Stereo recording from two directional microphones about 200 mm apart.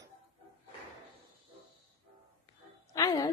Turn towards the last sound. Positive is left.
turn(degrees=20)  # may be behind; listen again after turning